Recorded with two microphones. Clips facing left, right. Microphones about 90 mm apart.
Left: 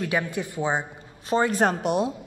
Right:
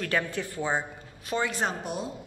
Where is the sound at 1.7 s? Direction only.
70° left (ahead or behind).